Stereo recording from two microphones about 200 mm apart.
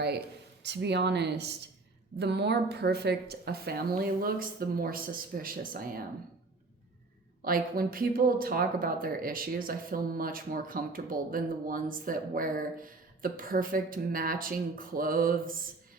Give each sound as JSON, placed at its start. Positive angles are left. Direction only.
{"t": 0.6, "sound": "speech", "side_deg": -60}
{"t": 7.4, "sound": "speech", "side_deg": -45}